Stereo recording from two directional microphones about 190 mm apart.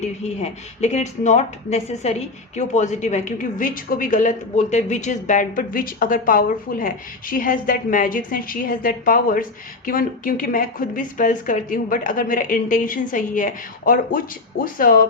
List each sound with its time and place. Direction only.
0.0 s speech: 35° left (ahead or behind)